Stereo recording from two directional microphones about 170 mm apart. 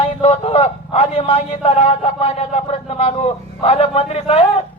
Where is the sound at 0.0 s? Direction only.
35° left (ahead or behind).